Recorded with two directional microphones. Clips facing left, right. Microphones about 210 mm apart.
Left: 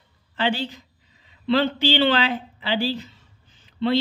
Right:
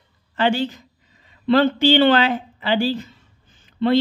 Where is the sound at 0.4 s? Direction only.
50° right (ahead or behind).